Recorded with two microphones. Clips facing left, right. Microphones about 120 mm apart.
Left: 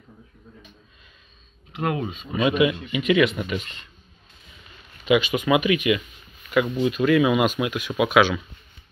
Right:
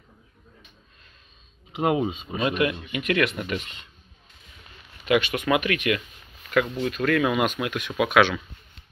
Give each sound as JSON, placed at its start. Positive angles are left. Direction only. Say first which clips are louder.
{"t": 1.8, "sound": "speech", "louder": "right 3 dB", "side_deg": -15}
{"t": 2.3, "sound": "speech", "louder": "left 5 dB", "side_deg": 0}
{"t": 5.0, "sound": "speech", "louder": "left 2 dB", "side_deg": 10}